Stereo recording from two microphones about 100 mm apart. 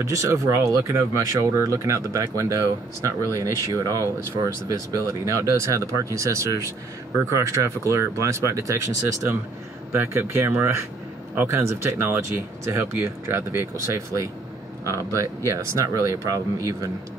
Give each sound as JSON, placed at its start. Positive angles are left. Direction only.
{"t": 0.1, "sound": "speech", "side_deg": -30}